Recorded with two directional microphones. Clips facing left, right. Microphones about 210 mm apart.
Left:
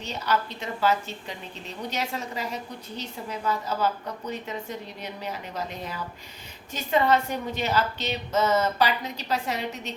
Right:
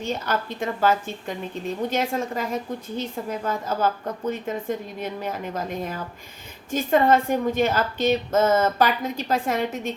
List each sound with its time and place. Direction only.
0.0 s a woman's voice: 50° right (ahead or behind)